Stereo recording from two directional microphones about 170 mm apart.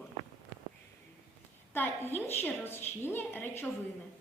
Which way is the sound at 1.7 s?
10° left (ahead or behind).